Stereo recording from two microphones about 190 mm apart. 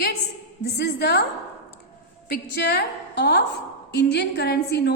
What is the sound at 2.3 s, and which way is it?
A woman's voice, 60° left (ahead or behind).